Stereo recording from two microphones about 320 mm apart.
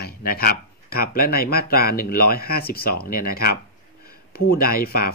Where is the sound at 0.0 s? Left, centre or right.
Left.